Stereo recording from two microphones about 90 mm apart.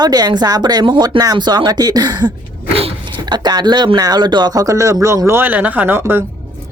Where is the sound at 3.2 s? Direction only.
50° right (ahead or behind); by 6.2 s 25° right (ahead or behind).